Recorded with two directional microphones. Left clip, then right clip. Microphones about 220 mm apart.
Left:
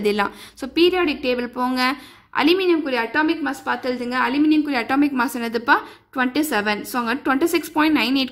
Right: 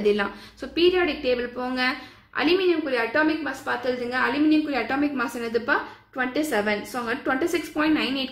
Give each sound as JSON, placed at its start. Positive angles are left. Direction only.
{"t": 0.0, "sound": "a woman's voice", "side_deg": 45}